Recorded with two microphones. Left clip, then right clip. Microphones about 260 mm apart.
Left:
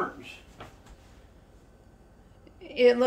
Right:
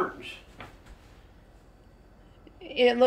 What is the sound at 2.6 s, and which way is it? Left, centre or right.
Speech, centre.